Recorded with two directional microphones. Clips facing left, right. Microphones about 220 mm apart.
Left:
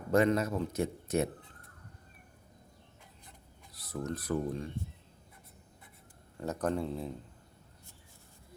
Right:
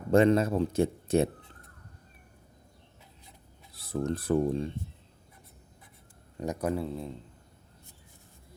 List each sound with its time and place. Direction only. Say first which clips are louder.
0.1 s speech: right 5 dB; 25° right (ahead or behind)
3.8 s speech: right 6 dB; 30° right (ahead or behind)
6.3 s speech: right 2 dB; 15° right (ahead or behind)